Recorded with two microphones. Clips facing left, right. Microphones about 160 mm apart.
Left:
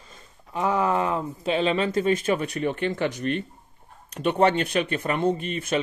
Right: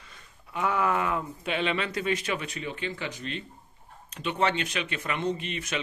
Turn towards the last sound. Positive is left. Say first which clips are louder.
# left 6 dB
turn(degrees=50)  # may be behind; listen again after turning